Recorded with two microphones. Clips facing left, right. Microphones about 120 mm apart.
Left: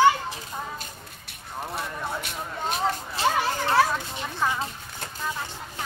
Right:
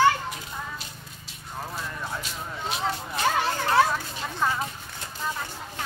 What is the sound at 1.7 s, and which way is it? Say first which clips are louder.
Vehicle: left 4 dB; 60° left (ahead or behind).